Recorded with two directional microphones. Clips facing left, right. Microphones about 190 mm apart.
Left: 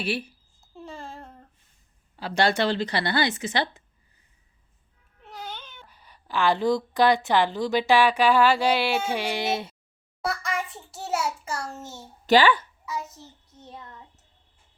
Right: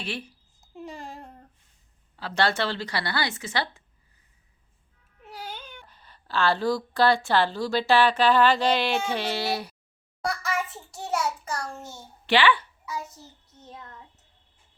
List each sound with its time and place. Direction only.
0.0 s a woman's voice: 10° left (ahead or behind)
0.7 s babbling: 15° right (ahead or behind)
2.1 s speech: 15° left (ahead or behind)
5.2 s baby cry: 10° right (ahead or behind)
5.9 s a woman's voice: 10° left (ahead or behind)
10.2 s a sound: centre (ahead or behind)
11.4 s child singing: 5° left (ahead or behind)
12.2 s speech: 40° left (ahead or behind)
13.1 s a child's voice: centre (ahead or behind)